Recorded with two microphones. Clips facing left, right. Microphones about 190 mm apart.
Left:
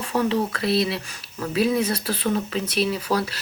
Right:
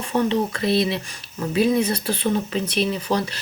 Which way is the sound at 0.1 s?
20° right (ahead or behind).